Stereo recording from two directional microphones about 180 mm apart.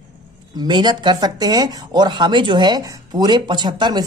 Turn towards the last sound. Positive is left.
turn(degrees=-25)  # may be behind; listen again after turning